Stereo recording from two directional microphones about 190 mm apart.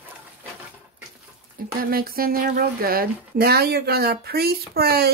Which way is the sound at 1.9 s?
50° right (ahead or behind).